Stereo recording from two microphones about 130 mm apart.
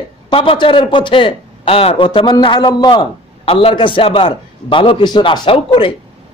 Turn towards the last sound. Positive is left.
turn(degrees=45)  # may be behind; listen again after turning